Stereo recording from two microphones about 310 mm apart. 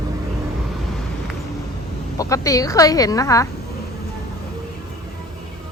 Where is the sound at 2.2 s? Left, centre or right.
Centre.